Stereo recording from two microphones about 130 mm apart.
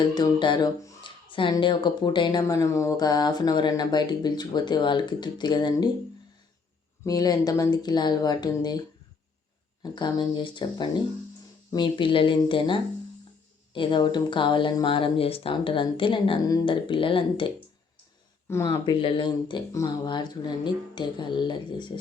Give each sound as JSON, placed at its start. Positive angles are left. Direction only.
{"t": 0.0, "sound": "speech", "side_deg": 35}
{"t": 2.4, "sound": "speech", "side_deg": 20}
{"t": 7.0, "sound": "speech", "side_deg": 30}
{"t": 9.8, "sound": "speech", "side_deg": 35}
{"t": 18.4, "sound": "speech", "side_deg": 20}
{"t": 18.9, "sound": "speech", "side_deg": 40}